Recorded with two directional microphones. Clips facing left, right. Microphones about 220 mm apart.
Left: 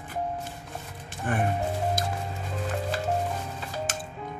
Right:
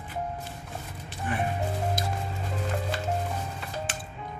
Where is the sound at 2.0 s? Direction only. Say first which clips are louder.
Left 2 dB; 45° left (ahead or behind).